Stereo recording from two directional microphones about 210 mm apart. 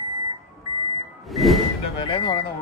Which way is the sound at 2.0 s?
25° left (ahead or behind).